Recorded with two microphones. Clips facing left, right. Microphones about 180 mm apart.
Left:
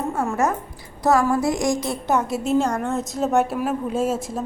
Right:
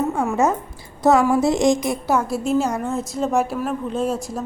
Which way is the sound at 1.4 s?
25° right (ahead or behind).